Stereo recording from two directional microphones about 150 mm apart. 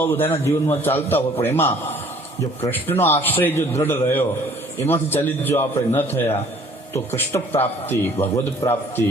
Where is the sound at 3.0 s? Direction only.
15° left (ahead or behind).